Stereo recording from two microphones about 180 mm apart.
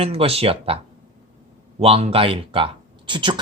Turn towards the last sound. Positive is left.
turn(degrees=-25)  # may be behind; listen again after turning